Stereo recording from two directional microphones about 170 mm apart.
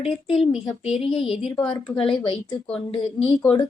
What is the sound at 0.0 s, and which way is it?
A woman's voice, 35° left (ahead or behind).